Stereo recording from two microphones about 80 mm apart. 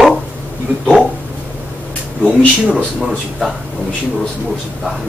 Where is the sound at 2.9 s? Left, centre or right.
Centre.